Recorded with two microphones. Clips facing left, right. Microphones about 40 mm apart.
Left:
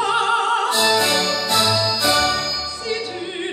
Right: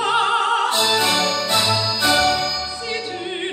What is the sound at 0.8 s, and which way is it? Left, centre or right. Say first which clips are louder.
Music: left 1 dB; centre.